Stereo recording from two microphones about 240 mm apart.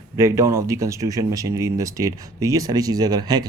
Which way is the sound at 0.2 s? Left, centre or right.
Centre.